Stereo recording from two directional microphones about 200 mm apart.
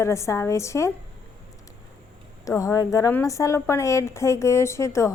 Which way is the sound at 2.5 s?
15° left (ahead or behind).